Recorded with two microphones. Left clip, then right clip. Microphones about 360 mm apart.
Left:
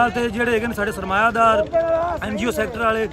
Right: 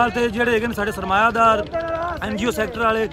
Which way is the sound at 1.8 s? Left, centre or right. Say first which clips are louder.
Left 5 dB; left.